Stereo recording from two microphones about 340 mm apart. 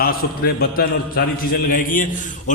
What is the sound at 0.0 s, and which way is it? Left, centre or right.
A man's voice, left.